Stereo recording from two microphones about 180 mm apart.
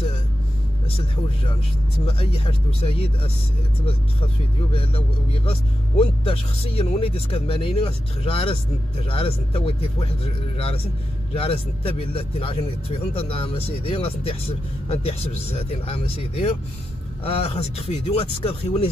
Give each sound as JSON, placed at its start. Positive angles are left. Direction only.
{"t": 2.0, "sound": "a man's voice", "side_deg": 30}
{"t": 4.7, "sound": "a man's voice", "side_deg": 30}